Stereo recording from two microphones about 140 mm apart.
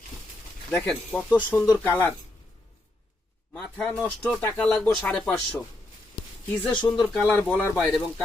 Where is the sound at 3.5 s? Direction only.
5° left (ahead or behind).